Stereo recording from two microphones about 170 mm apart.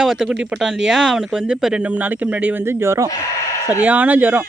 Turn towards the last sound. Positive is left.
turn(degrees=-10)  # may be behind; listen again after turning